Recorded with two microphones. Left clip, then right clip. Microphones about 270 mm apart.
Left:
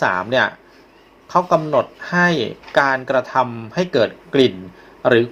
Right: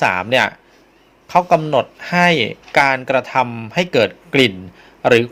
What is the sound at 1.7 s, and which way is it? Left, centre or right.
Speech, right.